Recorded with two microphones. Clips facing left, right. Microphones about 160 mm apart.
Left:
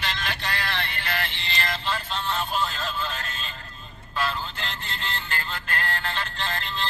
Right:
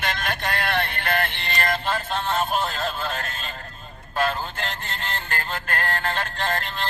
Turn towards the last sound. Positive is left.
turn(degrees=-50)  # may be behind; listen again after turning